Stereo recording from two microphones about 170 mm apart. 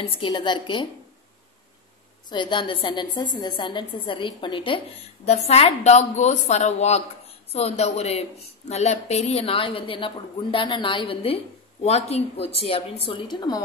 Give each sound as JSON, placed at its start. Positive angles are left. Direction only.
{"t": 0.0, "sound": "a woman's voice", "side_deg": 30}
{"t": 2.2, "sound": "a woman's voice", "side_deg": 25}